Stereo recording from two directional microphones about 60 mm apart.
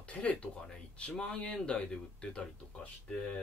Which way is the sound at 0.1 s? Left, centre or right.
Left.